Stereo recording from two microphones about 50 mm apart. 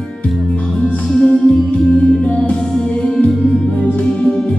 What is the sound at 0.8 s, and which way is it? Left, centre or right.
Music, centre.